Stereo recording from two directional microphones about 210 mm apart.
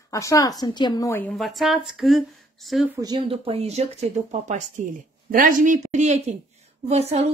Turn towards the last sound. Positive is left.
turn(degrees=-30)  # may be behind; listen again after turning